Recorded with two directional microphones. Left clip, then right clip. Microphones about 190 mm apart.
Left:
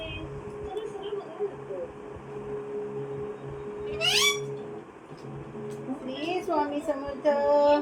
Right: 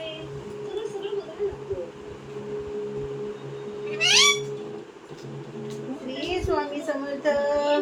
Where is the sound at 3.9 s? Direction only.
10° right (ahead or behind).